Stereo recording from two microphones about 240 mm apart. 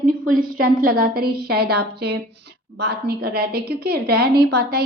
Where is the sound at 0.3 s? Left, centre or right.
Right.